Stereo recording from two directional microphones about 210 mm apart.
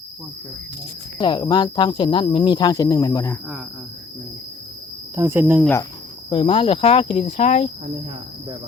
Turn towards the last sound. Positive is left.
turn(degrees=30)  # may be behind; listen again after turning